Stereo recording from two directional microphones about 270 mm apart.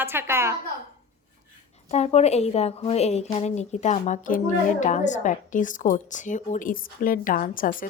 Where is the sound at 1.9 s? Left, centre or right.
Left.